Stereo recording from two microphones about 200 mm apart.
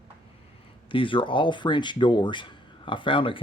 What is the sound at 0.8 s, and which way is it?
Speech, 25° left (ahead or behind).